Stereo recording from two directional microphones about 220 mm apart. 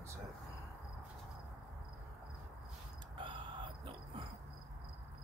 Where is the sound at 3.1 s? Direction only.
20° right (ahead or behind).